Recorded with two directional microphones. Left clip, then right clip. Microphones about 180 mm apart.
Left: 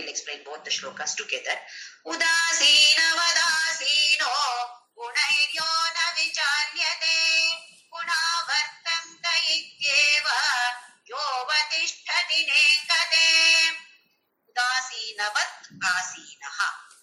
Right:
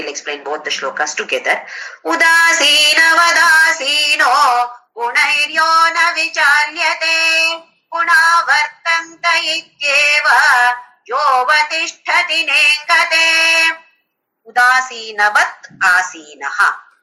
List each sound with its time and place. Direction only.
0.0 s speech: 50° right (ahead or behind)